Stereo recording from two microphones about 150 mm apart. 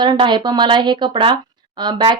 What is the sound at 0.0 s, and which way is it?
Speech, 30° right (ahead or behind).